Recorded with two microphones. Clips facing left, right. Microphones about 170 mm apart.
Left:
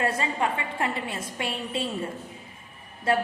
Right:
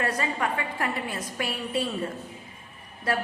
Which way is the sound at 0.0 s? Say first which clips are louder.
Left 1 dB; 25° left (ahead or behind).